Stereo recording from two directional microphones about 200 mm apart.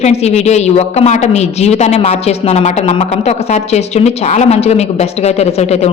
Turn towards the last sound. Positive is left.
turn(degrees=35)  # may be behind; listen again after turning